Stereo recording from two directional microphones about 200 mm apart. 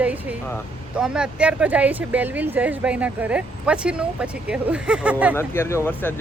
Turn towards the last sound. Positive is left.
turn(degrees=10)  # may be behind; listen again after turning